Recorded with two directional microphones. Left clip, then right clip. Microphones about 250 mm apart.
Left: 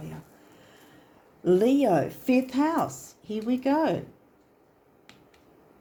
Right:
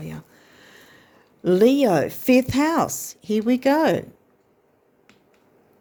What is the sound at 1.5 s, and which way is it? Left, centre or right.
Speech, right.